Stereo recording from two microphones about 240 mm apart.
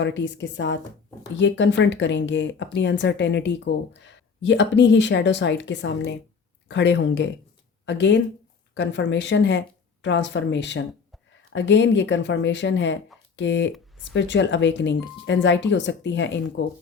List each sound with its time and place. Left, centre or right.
0.0 s speech: left